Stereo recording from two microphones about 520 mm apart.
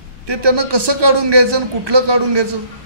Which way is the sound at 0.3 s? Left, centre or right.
Right.